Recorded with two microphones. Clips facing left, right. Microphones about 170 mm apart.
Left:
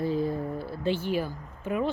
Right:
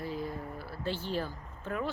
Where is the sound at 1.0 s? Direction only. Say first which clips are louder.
Left 6 dB; 10° left (ahead or behind).